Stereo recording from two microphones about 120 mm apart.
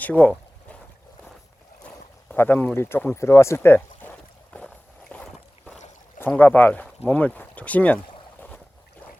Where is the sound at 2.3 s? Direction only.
15° left (ahead or behind).